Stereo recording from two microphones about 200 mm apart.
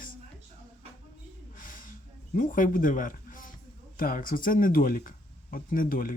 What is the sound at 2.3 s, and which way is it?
Speech, 40° left (ahead or behind).